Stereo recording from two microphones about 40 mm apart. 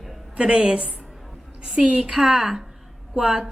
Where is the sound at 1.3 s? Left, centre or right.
Centre.